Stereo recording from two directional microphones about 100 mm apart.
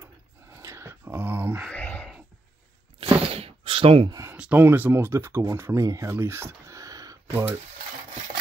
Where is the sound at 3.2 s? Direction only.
75° right (ahead or behind).